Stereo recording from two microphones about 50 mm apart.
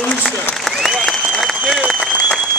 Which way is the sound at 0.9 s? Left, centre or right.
Centre.